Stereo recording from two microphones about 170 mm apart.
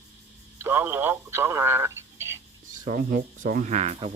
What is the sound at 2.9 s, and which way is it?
Speech, 55° right (ahead or behind).